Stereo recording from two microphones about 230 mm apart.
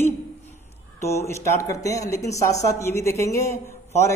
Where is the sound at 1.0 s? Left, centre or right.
Centre.